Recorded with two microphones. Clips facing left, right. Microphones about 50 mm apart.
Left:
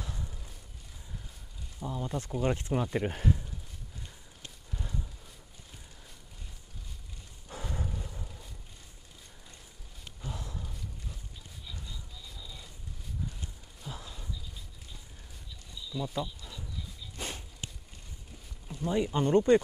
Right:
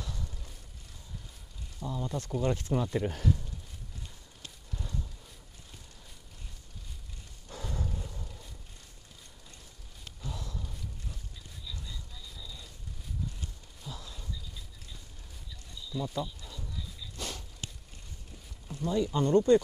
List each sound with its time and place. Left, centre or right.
0.0 s boat: left
1.8 s speech: centre
4.6 s a sound: centre
7.4 s a sound: centre
10.2 s horse: left
12.4 s vehicle: left
13.8 s a sound: left
16.0 s speech: centre
17.2 s walk: left
18.9 s speech: left